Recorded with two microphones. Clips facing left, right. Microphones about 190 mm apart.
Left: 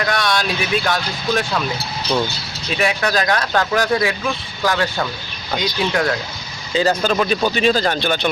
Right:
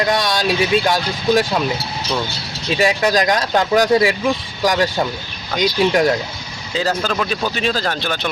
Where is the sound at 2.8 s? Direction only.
20° right (ahead or behind).